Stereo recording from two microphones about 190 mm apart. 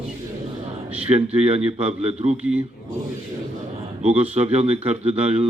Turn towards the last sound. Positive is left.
turn(degrees=-30)  # may be behind; listen again after turning